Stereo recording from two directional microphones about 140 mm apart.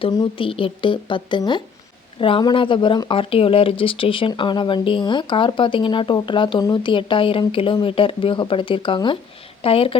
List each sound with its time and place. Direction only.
0.0 s speech: 35° left (ahead or behind)